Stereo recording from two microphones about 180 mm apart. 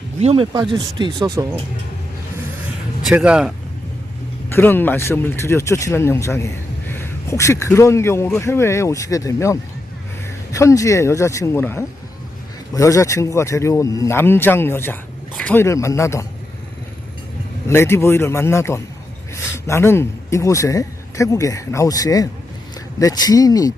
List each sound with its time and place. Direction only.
0.2 s speech: 35° right (ahead or behind)
0.5 s speech: 20° right (ahead or behind)
3.0 s speech: 5° right (ahead or behind)
4.4 s speech: 10° left (ahead or behind)
17.7 s speech: 15° left (ahead or behind)